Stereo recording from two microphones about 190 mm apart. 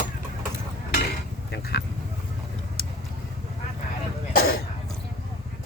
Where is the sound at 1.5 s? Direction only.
60° left (ahead or behind).